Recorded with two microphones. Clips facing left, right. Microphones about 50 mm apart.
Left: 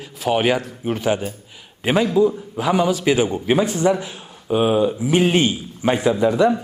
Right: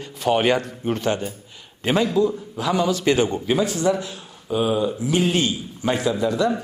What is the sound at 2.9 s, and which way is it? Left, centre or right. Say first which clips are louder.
Speech: left 1 dB; centre.